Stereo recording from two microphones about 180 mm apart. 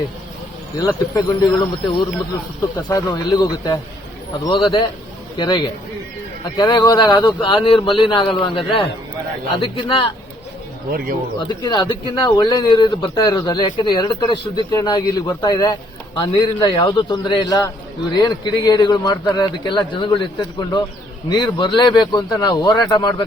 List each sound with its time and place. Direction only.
0.8 s speech: 20° left (ahead or behind)
2.9 s speech: 20° left (ahead or behind)
11.3 s speech: 25° left (ahead or behind)